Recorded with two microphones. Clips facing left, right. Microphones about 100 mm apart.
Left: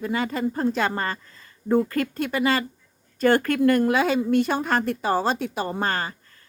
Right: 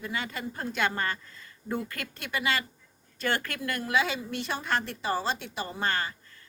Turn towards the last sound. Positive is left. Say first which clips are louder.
# left 5 dB
turn(degrees=40)  # may be behind; listen again after turning